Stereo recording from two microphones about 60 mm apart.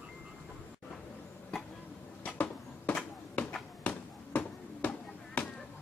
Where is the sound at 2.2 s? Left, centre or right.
Left.